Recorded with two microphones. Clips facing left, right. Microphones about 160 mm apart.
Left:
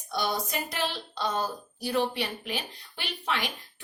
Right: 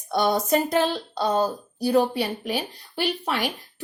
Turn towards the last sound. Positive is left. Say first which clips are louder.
# right 7 dB
turn(degrees=-40)  # may be behind; listen again after turning